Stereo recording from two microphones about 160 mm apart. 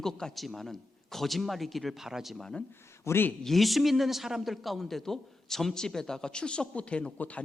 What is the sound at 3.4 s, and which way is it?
A man's voice, centre (ahead or behind).